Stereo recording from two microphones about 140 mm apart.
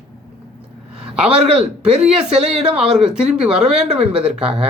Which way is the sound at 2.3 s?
45° right (ahead or behind).